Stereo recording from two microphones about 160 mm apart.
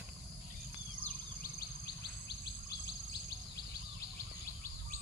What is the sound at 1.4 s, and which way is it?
Bird vocalization, 85° left.